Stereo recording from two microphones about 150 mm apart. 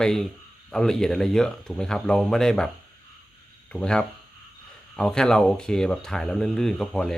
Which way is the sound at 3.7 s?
5° left (ahead or behind).